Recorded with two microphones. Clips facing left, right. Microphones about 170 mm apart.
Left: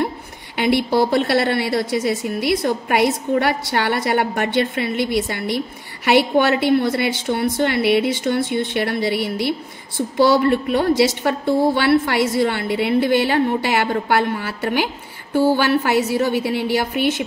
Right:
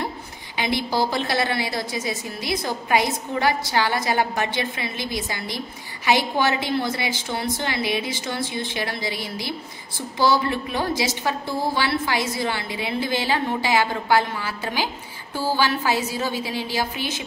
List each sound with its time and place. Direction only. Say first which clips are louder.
0.6 s speech: left 6 dB; 65° left (ahead or behind)